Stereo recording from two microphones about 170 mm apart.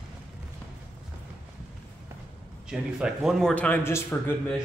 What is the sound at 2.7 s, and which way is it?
Speech, 5° right (ahead or behind).